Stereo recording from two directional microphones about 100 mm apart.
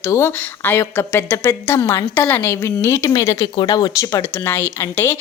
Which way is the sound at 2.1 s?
20° left (ahead or behind).